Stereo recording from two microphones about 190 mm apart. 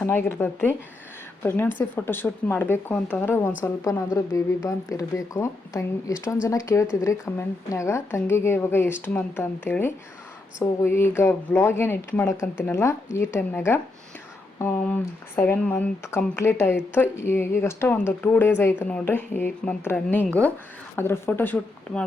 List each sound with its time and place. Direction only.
0.0 s speech: 15° left (ahead or behind)